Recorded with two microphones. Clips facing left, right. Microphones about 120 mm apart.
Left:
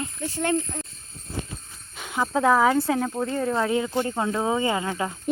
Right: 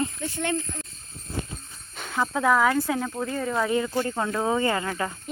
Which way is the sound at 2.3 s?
30° left (ahead or behind).